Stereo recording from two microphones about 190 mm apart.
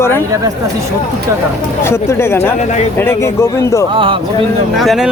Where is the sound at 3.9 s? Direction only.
25° right (ahead or behind).